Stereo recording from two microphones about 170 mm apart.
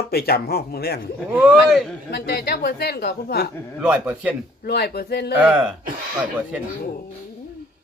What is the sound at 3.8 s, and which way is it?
Speech, 5° right (ahead or behind).